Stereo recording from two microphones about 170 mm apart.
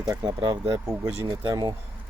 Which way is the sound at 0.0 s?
25° right (ahead or behind).